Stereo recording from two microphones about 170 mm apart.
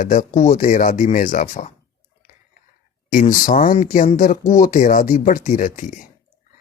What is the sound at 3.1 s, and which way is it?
Speech, 50° left (ahead or behind).